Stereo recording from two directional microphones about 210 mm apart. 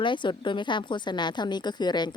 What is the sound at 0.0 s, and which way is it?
Speech, 20° left (ahead or behind).